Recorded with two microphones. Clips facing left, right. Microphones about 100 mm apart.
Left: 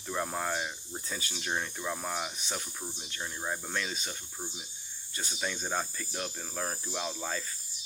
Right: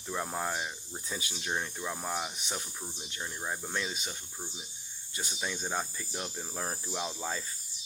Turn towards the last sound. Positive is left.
turn(degrees=-20)  # may be behind; listen again after turning